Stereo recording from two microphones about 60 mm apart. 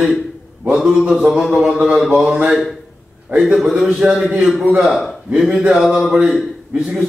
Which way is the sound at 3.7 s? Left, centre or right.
Centre.